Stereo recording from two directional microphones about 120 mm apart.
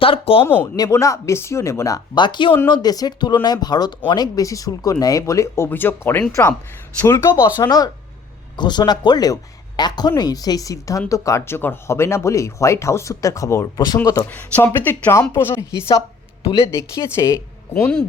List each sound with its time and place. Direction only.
0.0 s a sound: 50° left (ahead or behind)
0.4 s speech: 15° left (ahead or behind)
2.1 s speech: 40° left (ahead or behind); by 7.4 s 20° left (ahead or behind)
7.4 s speech: 35° left (ahead or behind)
14.3 s speech: 15° left (ahead or behind)